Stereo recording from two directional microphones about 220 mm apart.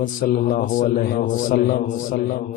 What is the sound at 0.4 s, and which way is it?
A man's voice, 35° left (ahead or behind).